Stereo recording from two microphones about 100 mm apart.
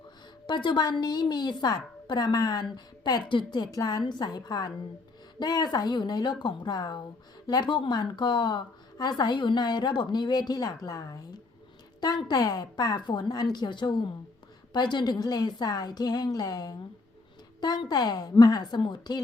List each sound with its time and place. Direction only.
0.4 s a woman's voice: 50° left (ahead or behind)